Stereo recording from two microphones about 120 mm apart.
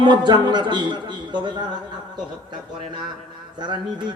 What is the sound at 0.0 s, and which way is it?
Speech, 40° right (ahead or behind).